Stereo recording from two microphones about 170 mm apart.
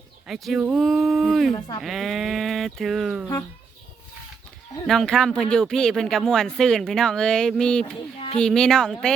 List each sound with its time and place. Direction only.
0.3 s speech: centre (ahead or behind)
1.5 s speech: 25° left (ahead or behind)
1.8 s speech: centre (ahead or behind)
4.9 s speech: centre (ahead or behind)